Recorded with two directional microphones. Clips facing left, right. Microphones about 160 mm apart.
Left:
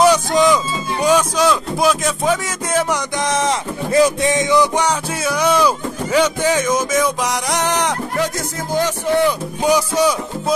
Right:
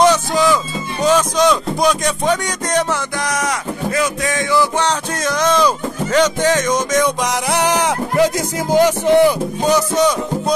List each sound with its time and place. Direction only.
0.0 s music: 15° left (ahead or behind)
1.0 s speech: 10° left (ahead or behind)
3.3 s speech: 25° left (ahead or behind); by 5.7 s 10° left (ahead or behind)
6.1 s music: 10° left (ahead or behind)
7.5 s speech: 5° right (ahead or behind)
9.6 s music: 10° left (ahead or behind)